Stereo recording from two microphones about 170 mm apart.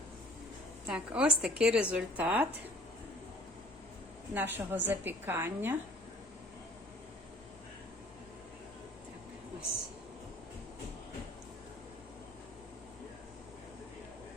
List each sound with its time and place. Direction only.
0.9 s a woman's voice: 5° right (ahead or behind)
4.4 s a woman's voice: 10° right (ahead or behind)